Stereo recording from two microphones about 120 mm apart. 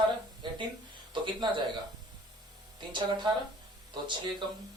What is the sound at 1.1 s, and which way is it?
Speech, 40° right (ahead or behind).